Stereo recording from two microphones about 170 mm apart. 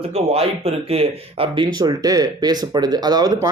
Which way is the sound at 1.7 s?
25° right (ahead or behind).